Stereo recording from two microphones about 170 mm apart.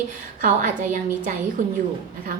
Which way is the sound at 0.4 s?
50° right (ahead or behind).